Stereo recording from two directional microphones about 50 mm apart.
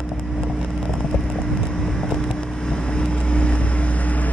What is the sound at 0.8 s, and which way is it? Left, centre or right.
Vehicle, centre.